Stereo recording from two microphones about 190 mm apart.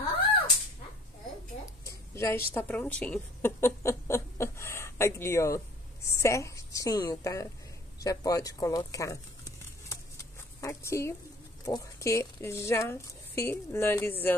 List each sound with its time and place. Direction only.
1.9 s a woman's voice: 15° left (ahead or behind)
10.6 s a woman's voice: 15° left (ahead or behind)